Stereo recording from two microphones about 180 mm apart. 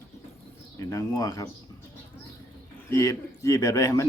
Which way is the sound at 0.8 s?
15° left (ahead or behind).